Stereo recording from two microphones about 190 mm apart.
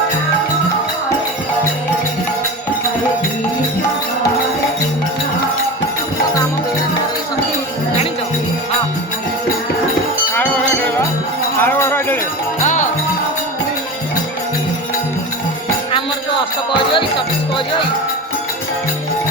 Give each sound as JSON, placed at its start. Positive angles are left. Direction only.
{"t": 11.6, "sound": "jingle bell", "side_deg": 10}
{"t": 12.6, "sound": "music", "side_deg": 40}
{"t": 16.9, "sound": "music", "side_deg": 25}